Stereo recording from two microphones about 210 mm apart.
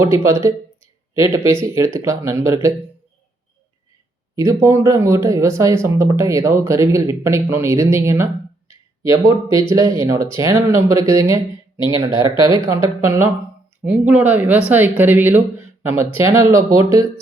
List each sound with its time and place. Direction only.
0.0 s speech: 15° right (ahead or behind)
4.4 s speech: 15° right (ahead or behind)
12.1 s speech: 20° left (ahead or behind)
12.4 s speech: 15° right (ahead or behind)